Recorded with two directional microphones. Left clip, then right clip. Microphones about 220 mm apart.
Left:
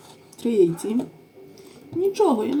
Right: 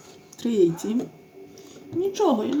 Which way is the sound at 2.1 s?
20° right (ahead or behind).